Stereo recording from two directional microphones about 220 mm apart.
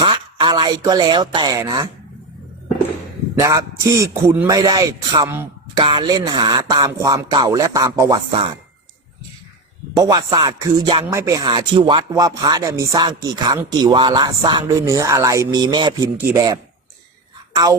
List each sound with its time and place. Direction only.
0.0 s speech: 20° right (ahead or behind)
3.3 s speech: 15° right (ahead or behind)
10.0 s speech: 15° right (ahead or behind)